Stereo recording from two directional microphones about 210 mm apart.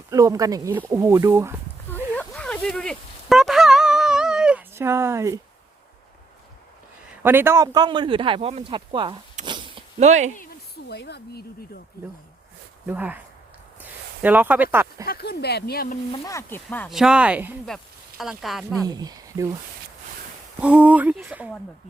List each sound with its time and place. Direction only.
0.1 s speech: 15° right (ahead or behind)
1.9 s a sound: 5° left (ahead or behind); by 5.4 s 15° right (ahead or behind)
7.2 s speech: 10° right (ahead or behind)
9.5 s zipper: 25° right (ahead or behind)
10.3 s a sound: 45° left (ahead or behind)
12.8 s speech: 10° right (ahead or behind)
15.0 s speech: 45° left (ahead or behind)
16.1 s speech: 15° left (ahead or behind)
17.0 s speech: 5° right (ahead or behind)
18.7 s speech: 15° right (ahead or behind)
20.6 s speech: 5° right (ahead or behind)